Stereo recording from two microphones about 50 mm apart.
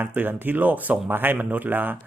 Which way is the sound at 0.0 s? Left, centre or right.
Right.